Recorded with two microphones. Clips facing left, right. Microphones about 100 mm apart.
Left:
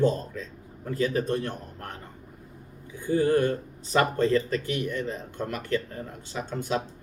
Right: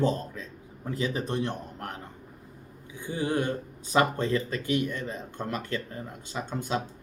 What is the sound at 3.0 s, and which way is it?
Speech, 20° right (ahead or behind).